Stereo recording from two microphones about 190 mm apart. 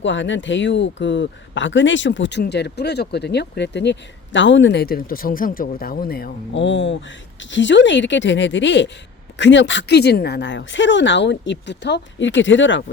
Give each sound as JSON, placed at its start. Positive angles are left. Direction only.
{"t": 0.0, "sound": "speech", "side_deg": 75}
{"t": 6.6, "sound": "speech", "side_deg": 75}